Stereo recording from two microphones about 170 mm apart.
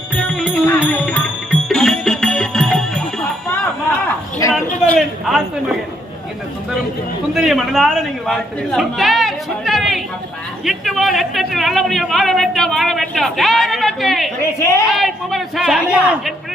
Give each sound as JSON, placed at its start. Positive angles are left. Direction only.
{"t": 0.2, "sound": "music", "side_deg": 5}
{"t": 4.9, "sound": "a sound", "side_deg": 0}
{"t": 7.3, "sound": "a man's voice", "side_deg": 0}
{"t": 14.6, "sound": "a woman's voice", "side_deg": 15}
{"t": 14.9, "sound": "speech", "side_deg": 0}